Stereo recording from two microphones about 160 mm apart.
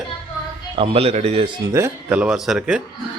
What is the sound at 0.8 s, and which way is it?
Speech, 40° right (ahead or behind).